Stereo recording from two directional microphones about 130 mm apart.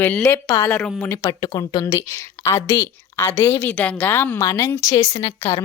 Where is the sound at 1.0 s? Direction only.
20° left (ahead or behind).